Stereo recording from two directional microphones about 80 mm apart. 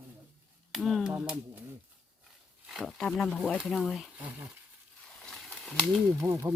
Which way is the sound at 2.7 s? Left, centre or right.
Centre.